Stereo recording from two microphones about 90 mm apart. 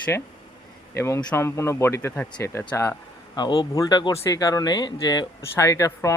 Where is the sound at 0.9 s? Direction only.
30° left (ahead or behind).